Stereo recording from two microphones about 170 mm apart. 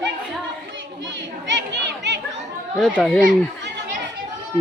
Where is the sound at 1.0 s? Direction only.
90° right.